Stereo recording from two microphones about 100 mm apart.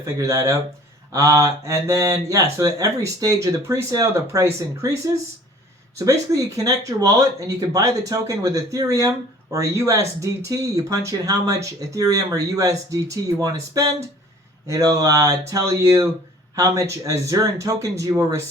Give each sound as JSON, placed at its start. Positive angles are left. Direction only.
{"t": 0.0, "sound": "speech", "side_deg": -35}
{"t": 6.0, "sound": "speech", "side_deg": -35}